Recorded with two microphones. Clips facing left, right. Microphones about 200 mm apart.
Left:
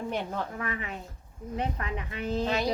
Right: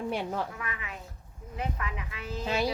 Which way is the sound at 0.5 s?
35° left (ahead or behind).